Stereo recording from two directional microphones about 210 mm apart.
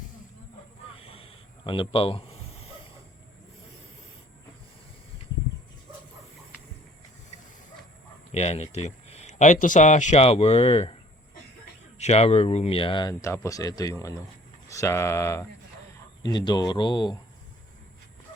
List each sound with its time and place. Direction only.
0.9 s a sound: 25° left (ahead or behind)
8.3 s speech: 30° left (ahead or behind)
11.9 s speech: 30° left (ahead or behind)